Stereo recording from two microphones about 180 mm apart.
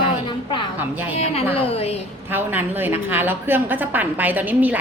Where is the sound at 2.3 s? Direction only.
10° right (ahead or behind).